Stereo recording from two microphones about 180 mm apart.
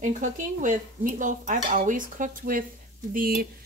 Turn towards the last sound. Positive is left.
turn(degrees=-55)  # may be behind; listen again after turning